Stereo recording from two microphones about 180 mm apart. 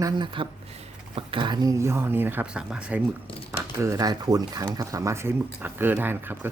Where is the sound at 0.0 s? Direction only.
25° right (ahead or behind); by 3.0 s 5° right (ahead or behind).